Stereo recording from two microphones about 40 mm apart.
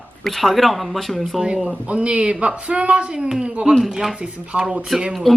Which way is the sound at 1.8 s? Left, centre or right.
Right.